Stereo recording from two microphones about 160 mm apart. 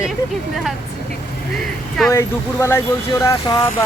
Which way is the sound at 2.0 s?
15° left (ahead or behind).